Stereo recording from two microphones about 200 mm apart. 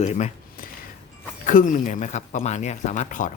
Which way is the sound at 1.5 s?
40° left (ahead or behind).